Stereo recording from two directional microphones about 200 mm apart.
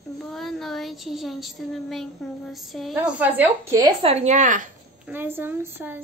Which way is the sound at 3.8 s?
30° right (ahead or behind).